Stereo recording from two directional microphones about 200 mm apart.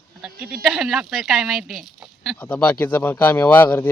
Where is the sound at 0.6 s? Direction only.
Centre (ahead or behind).